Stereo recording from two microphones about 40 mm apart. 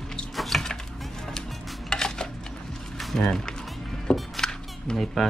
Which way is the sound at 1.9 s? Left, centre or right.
Centre.